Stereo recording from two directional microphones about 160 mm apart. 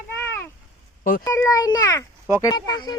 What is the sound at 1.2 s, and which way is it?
A child's voice, 20° left (ahead or behind).